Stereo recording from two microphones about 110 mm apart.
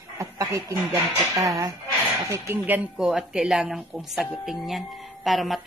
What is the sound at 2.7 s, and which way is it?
Speech, 10° right (ahead or behind).